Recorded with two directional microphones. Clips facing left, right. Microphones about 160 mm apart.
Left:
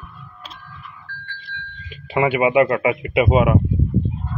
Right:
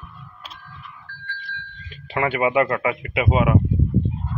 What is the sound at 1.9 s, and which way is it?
Speech, 15° left (ahead or behind).